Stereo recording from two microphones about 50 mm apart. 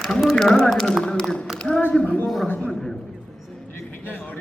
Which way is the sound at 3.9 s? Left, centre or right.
Left.